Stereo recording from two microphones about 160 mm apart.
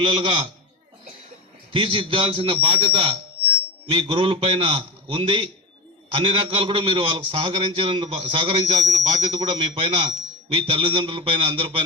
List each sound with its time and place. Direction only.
0.0 s a man's voice: 30° right (ahead or behind)
1.7 s a man's voice: 30° right (ahead or behind)